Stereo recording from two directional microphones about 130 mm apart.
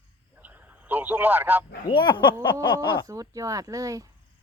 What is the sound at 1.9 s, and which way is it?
Speech, 35° left (ahead or behind).